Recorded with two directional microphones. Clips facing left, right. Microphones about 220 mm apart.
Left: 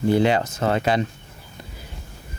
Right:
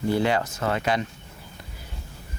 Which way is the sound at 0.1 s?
20° left (ahead or behind).